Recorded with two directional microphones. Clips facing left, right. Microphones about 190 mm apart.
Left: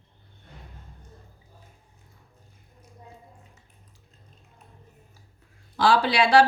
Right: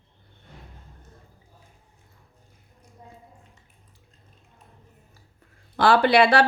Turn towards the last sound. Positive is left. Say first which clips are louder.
# right 2 dB
turn(degrees=-60)  # may be behind; listen again after turning